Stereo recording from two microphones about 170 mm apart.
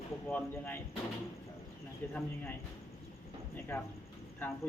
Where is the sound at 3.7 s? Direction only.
10° left (ahead or behind).